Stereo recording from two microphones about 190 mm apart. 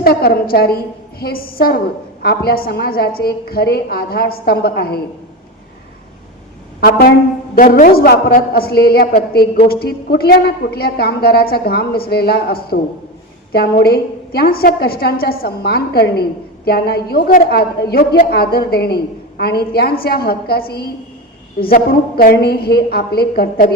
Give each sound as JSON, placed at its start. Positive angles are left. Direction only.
{"t": 0.0, "sound": "a man's voice", "side_deg": 55}
{"t": 6.7, "sound": "a woman's voice", "side_deg": 55}
{"t": 7.5, "sound": "a man's voice", "side_deg": 45}